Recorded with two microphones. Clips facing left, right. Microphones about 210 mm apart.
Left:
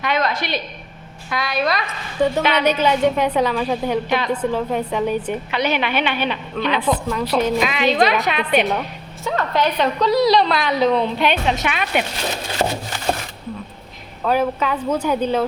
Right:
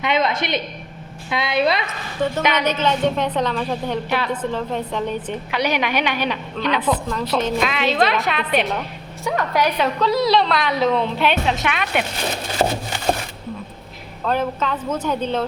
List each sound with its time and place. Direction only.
0.0 s a woman's voice: 20° right (ahead or behind)
2.2 s a woman's voice: 15° left (ahead or behind)
5.5 s a woman's voice: 10° right (ahead or behind)
6.7 s a woman's voice: 10° left (ahead or behind)
9.2 s a woman's voice: 15° right (ahead or behind)
12.6 s a woman's voice: 10° right (ahead or behind)
14.3 s a woman's voice: 10° left (ahead or behind)